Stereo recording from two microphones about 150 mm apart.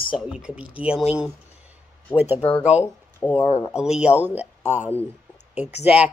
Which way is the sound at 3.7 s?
5° right (ahead or behind).